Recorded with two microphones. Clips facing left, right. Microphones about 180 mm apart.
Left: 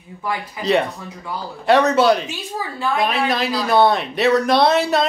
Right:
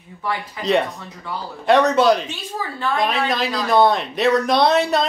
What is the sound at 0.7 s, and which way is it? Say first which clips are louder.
Speech: left 1 dB; centre (ahead or behind).